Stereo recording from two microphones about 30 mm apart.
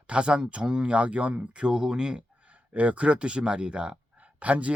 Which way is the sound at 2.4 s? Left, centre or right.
Right.